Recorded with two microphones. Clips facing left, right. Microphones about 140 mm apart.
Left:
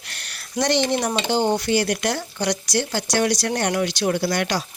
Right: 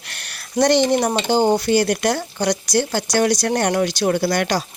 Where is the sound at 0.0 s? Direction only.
60° right (ahead or behind).